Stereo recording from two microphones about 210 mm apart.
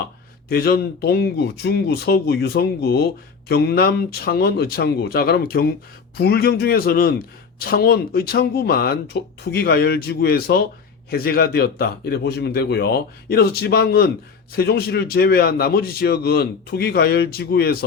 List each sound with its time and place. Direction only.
0.4 s a man's voice: 50° left (ahead or behind)